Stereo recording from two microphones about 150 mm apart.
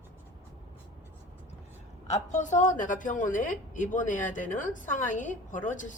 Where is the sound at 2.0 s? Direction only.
50° left (ahead or behind).